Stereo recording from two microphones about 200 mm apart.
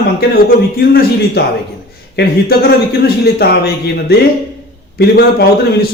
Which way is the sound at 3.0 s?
55° left (ahead or behind).